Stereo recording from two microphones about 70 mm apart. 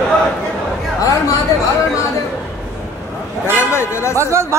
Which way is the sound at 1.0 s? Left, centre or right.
Left.